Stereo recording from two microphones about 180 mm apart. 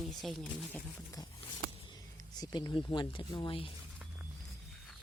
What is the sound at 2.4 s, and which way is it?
Speech, 20° left (ahead or behind).